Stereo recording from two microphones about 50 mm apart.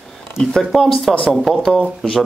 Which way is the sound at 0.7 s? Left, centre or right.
Centre.